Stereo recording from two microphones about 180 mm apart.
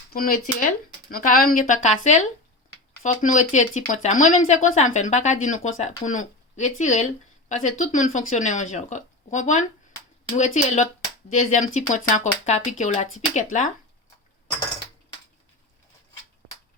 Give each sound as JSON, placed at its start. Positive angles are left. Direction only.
{"t": 0.1, "sound": "speech", "side_deg": 50}